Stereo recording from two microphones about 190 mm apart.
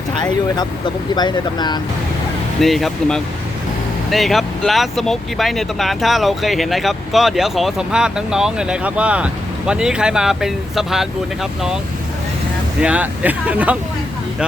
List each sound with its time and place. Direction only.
0.2 s speech: 20° left (ahead or behind)
2.6 s speech: centre (ahead or behind)
12.8 s speech: 5° right (ahead or behind)